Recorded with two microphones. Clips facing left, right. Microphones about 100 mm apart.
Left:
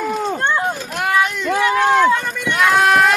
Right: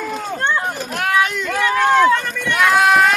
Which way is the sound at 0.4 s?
15° left (ahead or behind).